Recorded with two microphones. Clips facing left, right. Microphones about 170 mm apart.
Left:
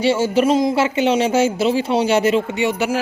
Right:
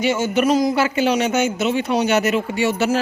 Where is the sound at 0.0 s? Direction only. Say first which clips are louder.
Left 2 dB; 30° left (ahead or behind).